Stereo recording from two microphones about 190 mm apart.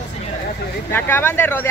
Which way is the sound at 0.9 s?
10° left (ahead or behind).